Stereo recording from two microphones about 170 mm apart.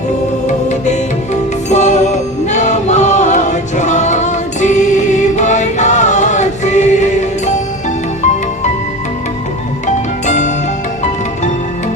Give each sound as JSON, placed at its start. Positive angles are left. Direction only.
{"t": 0.4, "sound": "music", "side_deg": 45}
{"t": 9.8, "sound": "music", "side_deg": 45}